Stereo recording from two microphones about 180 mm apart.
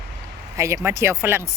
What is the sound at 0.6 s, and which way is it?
Speech, 15° right (ahead or behind).